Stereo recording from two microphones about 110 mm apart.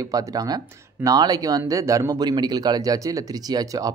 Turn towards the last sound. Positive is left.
turn(degrees=-35)  # may be behind; listen again after turning